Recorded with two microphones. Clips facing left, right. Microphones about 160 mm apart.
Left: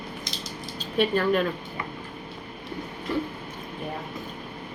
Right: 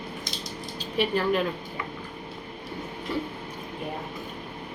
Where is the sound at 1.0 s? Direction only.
10° right (ahead or behind).